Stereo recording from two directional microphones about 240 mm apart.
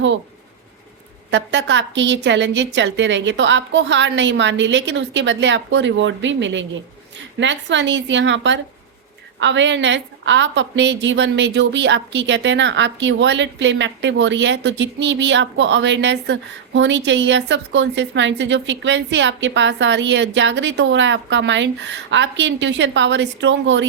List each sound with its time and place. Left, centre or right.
1.3 s a woman's voice: right